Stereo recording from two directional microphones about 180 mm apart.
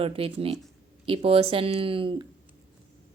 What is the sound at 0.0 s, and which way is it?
Speech, 30° right (ahead or behind).